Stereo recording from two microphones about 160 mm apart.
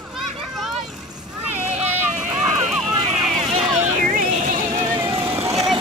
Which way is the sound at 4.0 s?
60° right (ahead or behind).